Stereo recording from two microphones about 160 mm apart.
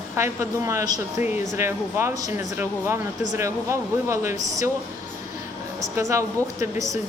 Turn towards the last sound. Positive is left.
turn(degrees=-20)  # may be behind; listen again after turning